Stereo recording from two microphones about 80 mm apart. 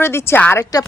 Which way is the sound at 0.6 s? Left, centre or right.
Left.